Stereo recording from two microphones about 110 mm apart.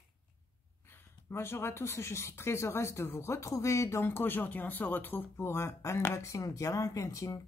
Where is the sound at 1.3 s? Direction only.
20° left (ahead or behind).